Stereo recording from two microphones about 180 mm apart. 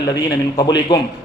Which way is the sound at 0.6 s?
25° left (ahead or behind).